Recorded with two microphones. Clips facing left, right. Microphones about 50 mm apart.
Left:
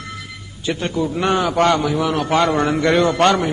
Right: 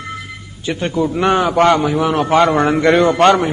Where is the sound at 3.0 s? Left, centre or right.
Centre.